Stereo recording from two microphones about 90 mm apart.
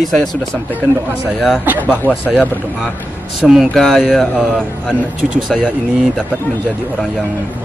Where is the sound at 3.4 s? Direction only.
5° right (ahead or behind).